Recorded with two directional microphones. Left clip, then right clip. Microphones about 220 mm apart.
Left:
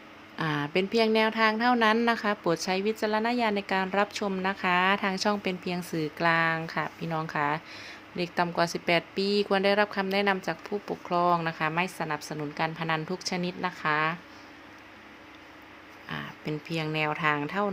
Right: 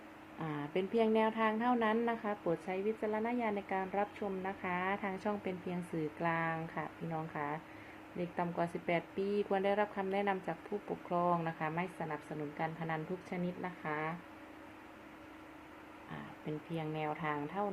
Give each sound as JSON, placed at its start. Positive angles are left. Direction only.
{"t": 0.3, "sound": "speech", "side_deg": 50}
{"t": 16.1, "sound": "speech", "side_deg": 40}